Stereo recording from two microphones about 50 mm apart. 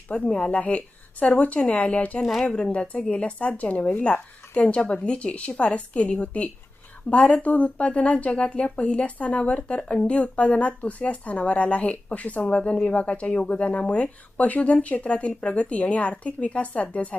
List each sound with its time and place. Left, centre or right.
0.1 s speech: centre
0.5 s speech: left
2.2 s speech: centre
2.7 s speech: left